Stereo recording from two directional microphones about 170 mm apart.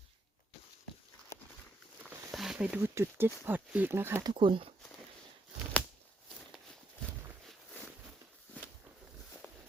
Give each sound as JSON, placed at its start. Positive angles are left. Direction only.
{"t": 2.3, "sound": "speech", "side_deg": 0}
{"t": 4.3, "sound": "speech", "side_deg": -30}